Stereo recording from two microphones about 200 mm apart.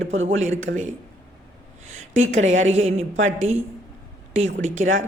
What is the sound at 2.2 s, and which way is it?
Speech, 35° right (ahead or behind).